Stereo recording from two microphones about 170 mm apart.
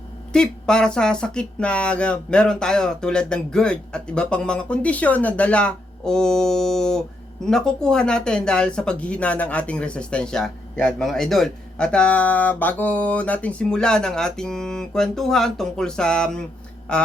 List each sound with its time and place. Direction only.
0.3 s speech: 5° left (ahead or behind)